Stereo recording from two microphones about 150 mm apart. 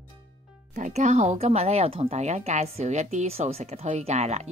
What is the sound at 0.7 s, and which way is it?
Speech, 55° right (ahead or behind).